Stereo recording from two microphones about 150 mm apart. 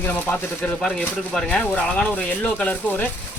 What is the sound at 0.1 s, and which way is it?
Speech, 10° left (ahead or behind).